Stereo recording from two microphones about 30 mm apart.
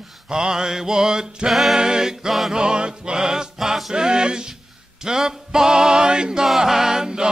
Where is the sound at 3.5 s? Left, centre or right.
Centre.